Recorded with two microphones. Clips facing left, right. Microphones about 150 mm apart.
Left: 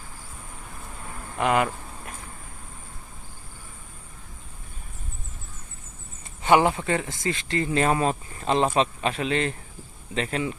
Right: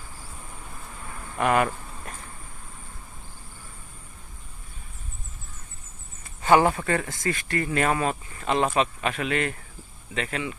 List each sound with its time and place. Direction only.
1.4 s speech: 15° left (ahead or behind)
6.4 s speech: 20° left (ahead or behind); by 10.5 s 35° left (ahead or behind)